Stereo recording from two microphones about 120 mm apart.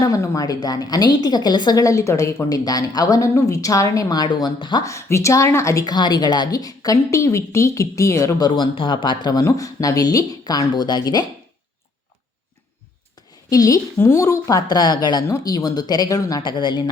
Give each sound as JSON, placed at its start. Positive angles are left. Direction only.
{"t": 0.0, "sound": "a woman's voice", "side_deg": 30}
{"t": 4.9, "sound": "a woman's voice", "side_deg": 25}
{"t": 13.5, "sound": "a woman's voice", "side_deg": 30}
{"t": 14.7, "sound": "a woman's voice", "side_deg": 35}